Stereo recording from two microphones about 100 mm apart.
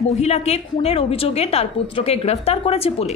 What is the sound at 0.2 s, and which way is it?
A woman's voice, 90° left.